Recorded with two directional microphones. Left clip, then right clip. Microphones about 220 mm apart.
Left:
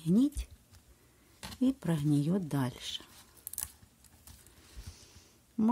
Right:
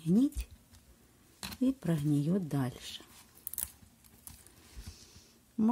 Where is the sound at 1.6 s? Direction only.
10° left (ahead or behind).